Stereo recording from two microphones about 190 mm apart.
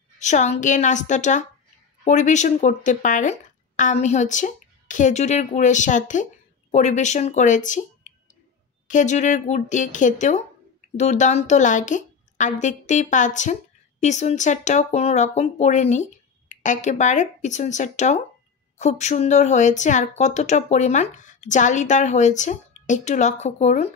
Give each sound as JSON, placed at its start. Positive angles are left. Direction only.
{"t": 0.2, "sound": "a woman's voice", "side_deg": 40}